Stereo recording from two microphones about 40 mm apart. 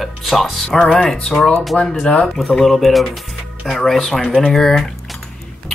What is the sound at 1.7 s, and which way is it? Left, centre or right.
Speech, centre.